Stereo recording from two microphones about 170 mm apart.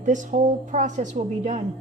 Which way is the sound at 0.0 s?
50° right (ahead or behind).